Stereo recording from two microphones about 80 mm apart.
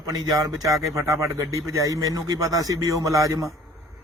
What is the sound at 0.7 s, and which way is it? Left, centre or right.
Speech, centre.